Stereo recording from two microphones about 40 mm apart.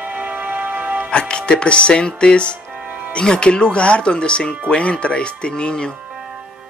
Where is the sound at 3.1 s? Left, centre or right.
Left.